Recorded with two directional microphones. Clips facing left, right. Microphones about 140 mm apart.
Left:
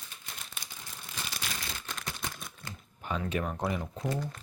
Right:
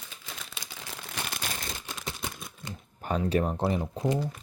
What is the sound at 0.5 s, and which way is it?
Crumpling, 90° right.